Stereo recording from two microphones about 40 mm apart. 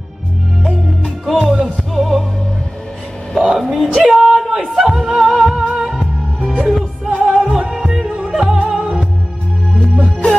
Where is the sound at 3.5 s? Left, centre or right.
Centre.